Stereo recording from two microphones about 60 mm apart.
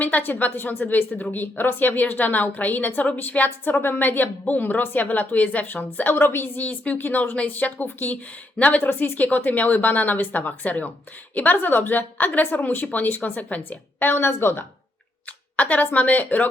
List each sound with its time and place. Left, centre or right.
0.0 s a woman's voice: left
6.6 s a woman's voice: left
15.5 s a woman's voice: left